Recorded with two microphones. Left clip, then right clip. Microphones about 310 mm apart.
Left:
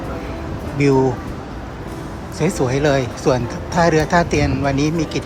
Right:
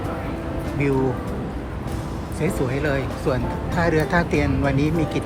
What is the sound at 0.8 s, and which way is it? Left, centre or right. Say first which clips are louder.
Speech: left 7 dB; centre.